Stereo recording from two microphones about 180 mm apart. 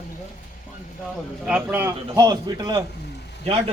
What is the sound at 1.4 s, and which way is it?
A man's voice, 5° right (ahead or behind).